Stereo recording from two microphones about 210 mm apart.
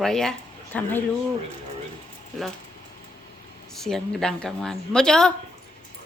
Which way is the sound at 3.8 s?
Centre (ahead or behind).